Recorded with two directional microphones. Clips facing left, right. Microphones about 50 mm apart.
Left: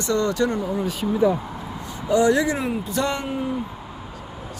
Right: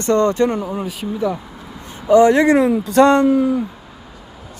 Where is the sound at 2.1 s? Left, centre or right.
Right.